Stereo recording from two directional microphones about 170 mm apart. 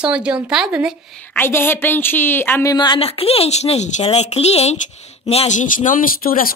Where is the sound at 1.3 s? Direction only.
10° left (ahead or behind).